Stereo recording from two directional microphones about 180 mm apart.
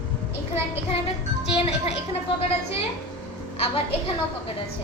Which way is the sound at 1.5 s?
35° left (ahead or behind).